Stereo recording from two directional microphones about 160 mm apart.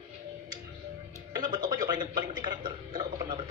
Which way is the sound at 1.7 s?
25° right (ahead or behind).